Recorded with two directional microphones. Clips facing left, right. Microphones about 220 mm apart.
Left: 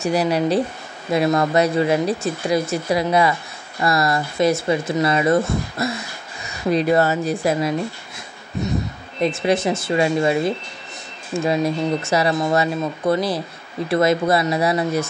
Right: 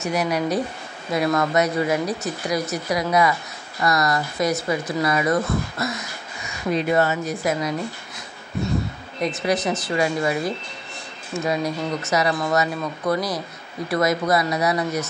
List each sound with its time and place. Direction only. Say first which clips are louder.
0.0 s speech: left 4 dB; 30° left (ahead or behind)
9.2 s speech: left 4 dB; 25° left (ahead or behind)